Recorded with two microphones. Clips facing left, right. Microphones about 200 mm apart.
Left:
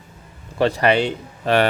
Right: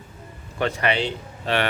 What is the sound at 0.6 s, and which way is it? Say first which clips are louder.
Speech: left 6 dB; 35° left (ahead or behind).